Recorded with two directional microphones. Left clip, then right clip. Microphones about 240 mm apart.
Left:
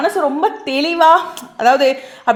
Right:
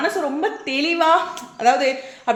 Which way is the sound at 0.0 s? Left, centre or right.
Left.